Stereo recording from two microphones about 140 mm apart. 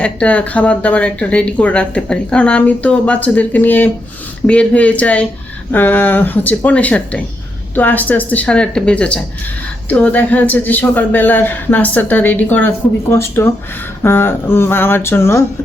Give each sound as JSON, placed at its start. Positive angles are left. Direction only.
{"t": 0.0, "sound": "speech", "side_deg": 10}